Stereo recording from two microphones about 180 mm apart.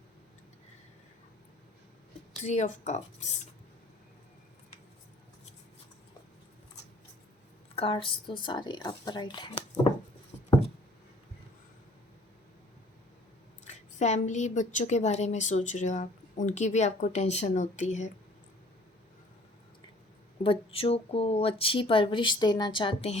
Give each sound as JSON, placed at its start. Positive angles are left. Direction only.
{"t": 2.4, "sound": "a woman's voice", "side_deg": 40}
{"t": 7.8, "sound": "speech", "side_deg": 30}
{"t": 13.7, "sound": "a woman's voice", "side_deg": 40}
{"t": 20.4, "sound": "speech", "side_deg": 30}